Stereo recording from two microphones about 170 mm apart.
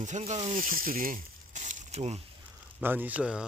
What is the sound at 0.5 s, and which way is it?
Speech, 55° right (ahead or behind).